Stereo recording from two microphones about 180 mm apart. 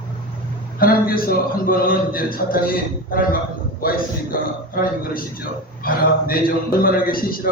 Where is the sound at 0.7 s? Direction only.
55° left (ahead or behind).